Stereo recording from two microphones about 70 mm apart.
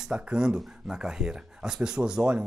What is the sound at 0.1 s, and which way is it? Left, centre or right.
Speech, centre.